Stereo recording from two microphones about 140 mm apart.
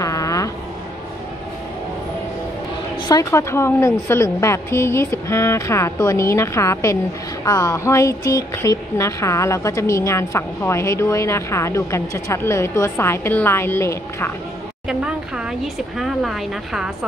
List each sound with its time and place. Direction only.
0.0 s music: 25° left (ahead or behind)
3.0 s speech: 25° left (ahead or behind)
14.9 s speech: 5° right (ahead or behind)